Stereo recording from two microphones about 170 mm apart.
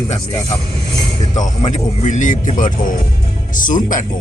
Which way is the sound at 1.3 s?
45° left (ahead or behind).